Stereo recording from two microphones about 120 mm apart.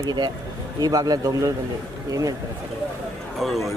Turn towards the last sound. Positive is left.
turn(degrees=0)  # may be behind; listen again after turning